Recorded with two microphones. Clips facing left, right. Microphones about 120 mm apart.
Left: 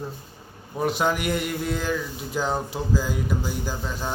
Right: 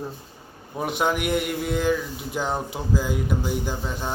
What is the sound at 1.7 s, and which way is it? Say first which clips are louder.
Music: right 4 dB; 15° right (ahead or behind).